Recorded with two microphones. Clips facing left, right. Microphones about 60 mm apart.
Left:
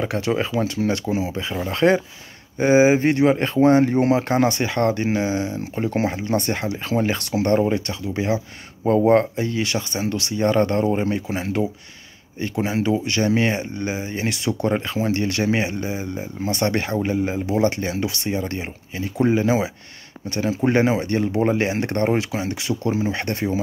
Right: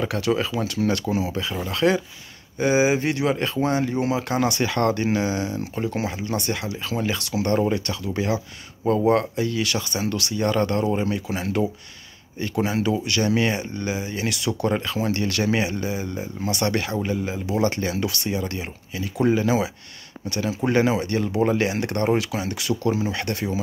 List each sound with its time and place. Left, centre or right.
0.0 s speech: left
0.7 s speech: centre; by 4.6 s left
4.6 s speech: centre; by 7.5 s left
7.5 s speech: left
17.6 s speech: centre